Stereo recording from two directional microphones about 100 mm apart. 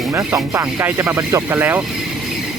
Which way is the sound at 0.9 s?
25° right (ahead or behind).